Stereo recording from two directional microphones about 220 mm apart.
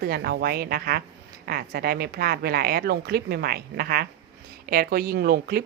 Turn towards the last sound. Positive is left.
turn(degrees=-45)  # may be behind; listen again after turning